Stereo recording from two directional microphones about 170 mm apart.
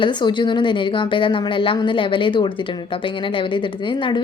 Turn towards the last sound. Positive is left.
turn(degrees=30)  # may be behind; listen again after turning